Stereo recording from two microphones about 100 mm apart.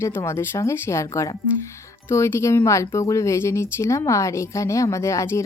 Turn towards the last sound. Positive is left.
turn(degrees=30)  # may be behind; listen again after turning